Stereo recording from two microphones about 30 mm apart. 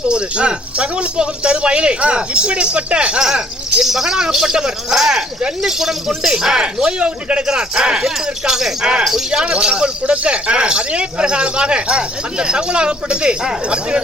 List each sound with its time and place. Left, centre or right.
0.1 s speech: right
3.2 s speech: right
4.9 s speech: centre
6.6 s speech: right
7.4 s speech: right
9.4 s speech: right